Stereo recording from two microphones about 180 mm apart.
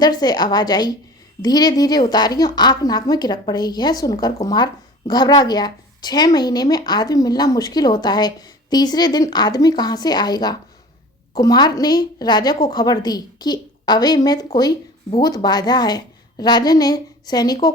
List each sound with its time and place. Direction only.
0.0 s a woman's voice: 20° left (ahead or behind)